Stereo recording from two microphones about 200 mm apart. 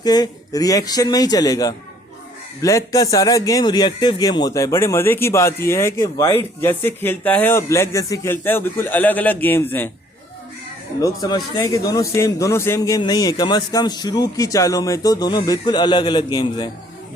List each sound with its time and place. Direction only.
0.0 s a man's voice: 20° left (ahead or behind)
11.0 s a man's voice: 20° left (ahead or behind)